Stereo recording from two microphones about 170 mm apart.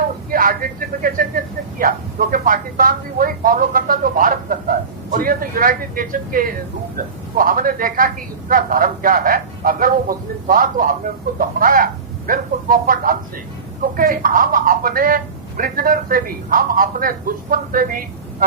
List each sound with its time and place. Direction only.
0.3 s a woman's voice: 55° right (ahead or behind)